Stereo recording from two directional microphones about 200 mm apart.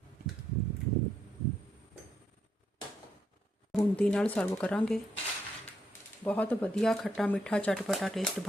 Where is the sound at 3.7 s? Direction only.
5° left (ahead or behind).